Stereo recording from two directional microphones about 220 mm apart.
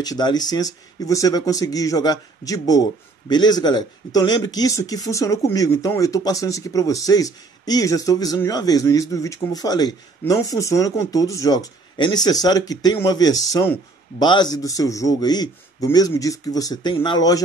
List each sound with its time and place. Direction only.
0.0 s speech: 20° left (ahead or behind)